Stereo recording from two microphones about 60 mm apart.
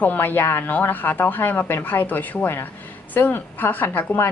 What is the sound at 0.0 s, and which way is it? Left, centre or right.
A woman's voice, left.